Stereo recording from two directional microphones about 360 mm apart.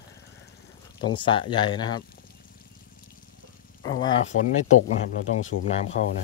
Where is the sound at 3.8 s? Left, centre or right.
Centre.